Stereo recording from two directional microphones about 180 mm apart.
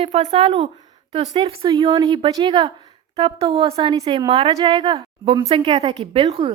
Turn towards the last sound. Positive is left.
turn(degrees=-35)  # may be behind; listen again after turning